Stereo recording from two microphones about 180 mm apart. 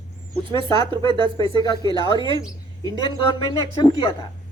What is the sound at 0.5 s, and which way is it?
A woman's voice, 25° right (ahead or behind).